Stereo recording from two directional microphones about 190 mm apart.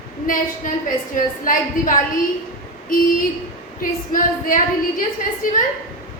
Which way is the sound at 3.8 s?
45° left (ahead or behind).